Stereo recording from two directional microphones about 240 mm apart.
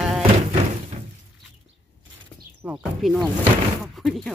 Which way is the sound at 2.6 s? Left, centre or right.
Centre.